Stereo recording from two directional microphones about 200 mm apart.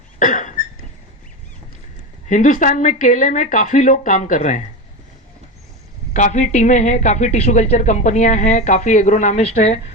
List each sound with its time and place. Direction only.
0.2 s cough: 40° left (ahead or behind)
2.3 s speech: 40° left (ahead or behind)
6.1 s speech: 40° left (ahead or behind)